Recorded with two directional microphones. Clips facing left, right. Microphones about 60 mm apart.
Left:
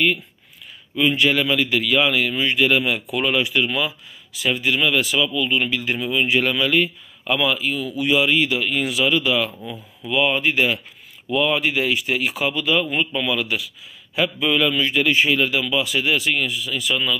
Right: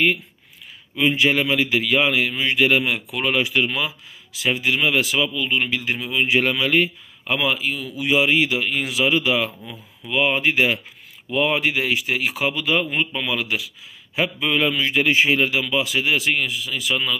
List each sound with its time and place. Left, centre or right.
0.9 s a man's voice: right
6.4 s a man's voice: right